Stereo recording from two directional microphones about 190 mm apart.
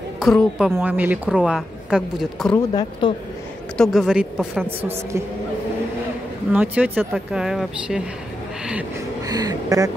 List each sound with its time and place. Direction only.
0.2 s a woman's voice: centre (ahead or behind)
2.5 s speech: 25° left (ahead or behind)
3.7 s a woman's voice: centre (ahead or behind)
6.5 s a woman's voice: 10° right (ahead or behind)
9.3 s speech: 20° right (ahead or behind)